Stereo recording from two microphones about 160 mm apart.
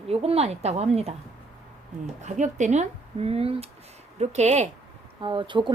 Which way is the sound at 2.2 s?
50° right (ahead or behind).